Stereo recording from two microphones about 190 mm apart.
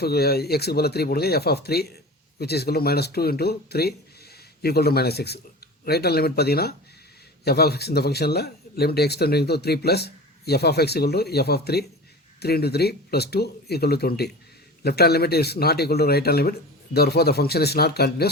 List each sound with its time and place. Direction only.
0.0 s speech: 55° left (ahead or behind)